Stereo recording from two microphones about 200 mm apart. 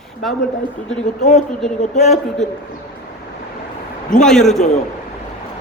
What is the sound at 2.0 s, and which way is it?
Speech, 35° left (ahead or behind).